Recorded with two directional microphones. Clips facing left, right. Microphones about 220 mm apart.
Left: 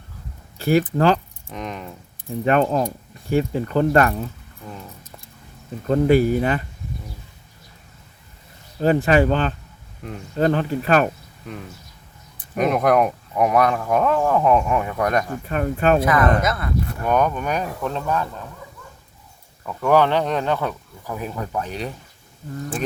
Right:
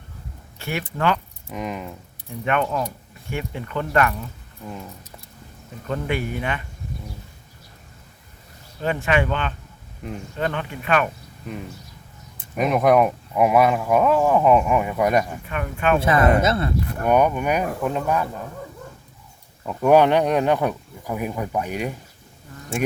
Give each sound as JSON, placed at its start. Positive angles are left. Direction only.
{"t": 0.6, "sound": "speech", "side_deg": 35}
{"t": 1.5, "sound": "speech", "side_deg": -5}
{"t": 2.4, "sound": "speech", "side_deg": 35}
{"t": 5.9, "sound": "speech", "side_deg": 35}
{"t": 8.8, "sound": "speech", "side_deg": 35}
{"t": 12.5, "sound": "speech", "side_deg": 0}
{"t": 15.4, "sound": "speech", "side_deg": 40}
{"t": 16.0, "sound": "speech", "side_deg": -25}
{"t": 17.1, "sound": "speech", "side_deg": -10}
{"t": 19.6, "sound": "speech", "side_deg": -15}